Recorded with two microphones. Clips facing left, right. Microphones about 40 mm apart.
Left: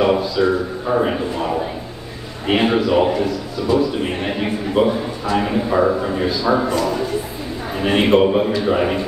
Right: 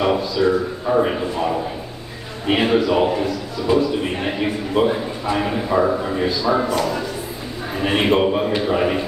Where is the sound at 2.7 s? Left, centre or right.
Centre.